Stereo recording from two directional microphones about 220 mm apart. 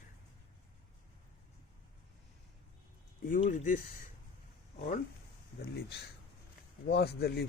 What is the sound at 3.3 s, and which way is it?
Speech, 35° left (ahead or behind).